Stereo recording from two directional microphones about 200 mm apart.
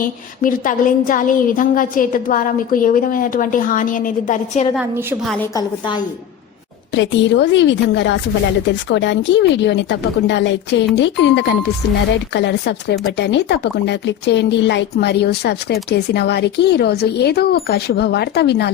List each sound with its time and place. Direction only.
0.4 s a woman's voice: 40° left (ahead or behind)
4.7 s a woman's voice: 10° right (ahead or behind)
5.5 s a woman's voice: 20° left (ahead or behind)
6.9 s speech: 65° left (ahead or behind)